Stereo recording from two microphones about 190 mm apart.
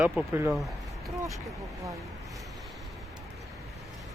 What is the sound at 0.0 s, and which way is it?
Speech, 10° right (ahead or behind).